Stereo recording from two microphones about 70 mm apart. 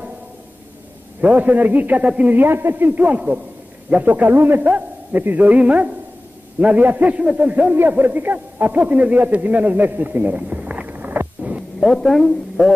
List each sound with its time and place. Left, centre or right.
1.2 s a man's voice: right
2.3 s a man's voice: right
11.8 s speech: centre